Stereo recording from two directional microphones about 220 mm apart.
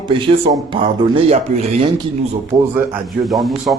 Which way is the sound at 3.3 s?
Centre (ahead or behind).